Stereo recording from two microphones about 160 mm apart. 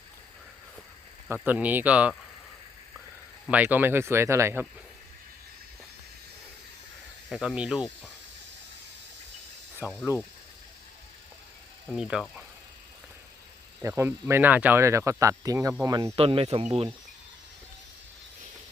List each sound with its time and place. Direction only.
1.3 s speech: 10° right (ahead or behind)
3.5 s speech: 10° right (ahead or behind)
7.3 s speech: centre (ahead or behind)
9.8 s speech: 15° right (ahead or behind)
11.9 s speech: 5° right (ahead or behind)
13.8 s speech: 20° right (ahead or behind)
16.1 s speech: 35° right (ahead or behind)